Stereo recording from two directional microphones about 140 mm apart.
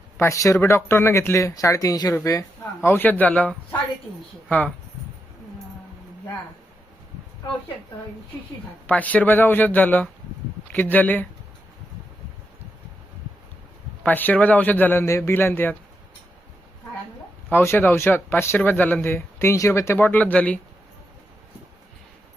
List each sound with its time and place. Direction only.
0.2 s speech: 20° left (ahead or behind)
8.9 s speech: 10° left (ahead or behind)
14.0 s speech: 10° left (ahead or behind)
17.5 s speech: 15° left (ahead or behind)